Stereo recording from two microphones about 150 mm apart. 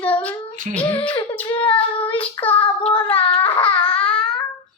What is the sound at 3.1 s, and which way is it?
Baby cry, 35° left (ahead or behind).